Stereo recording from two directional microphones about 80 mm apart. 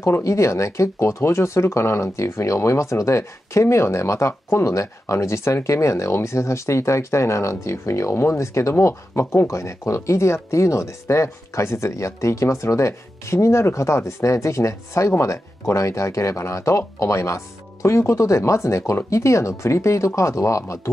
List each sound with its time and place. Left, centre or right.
0.0 s speech: left